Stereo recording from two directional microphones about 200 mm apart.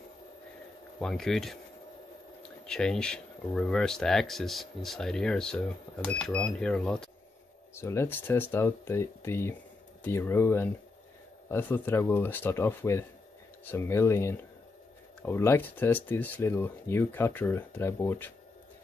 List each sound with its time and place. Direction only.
0.9 s speech: 5° left (ahead or behind)
2.6 s speech: 5° left (ahead or behind)